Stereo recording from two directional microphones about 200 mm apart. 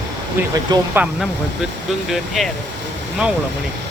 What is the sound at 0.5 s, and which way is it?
Speech, 20° right (ahead or behind).